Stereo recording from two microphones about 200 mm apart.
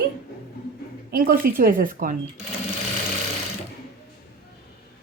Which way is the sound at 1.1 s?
50° right (ahead or behind).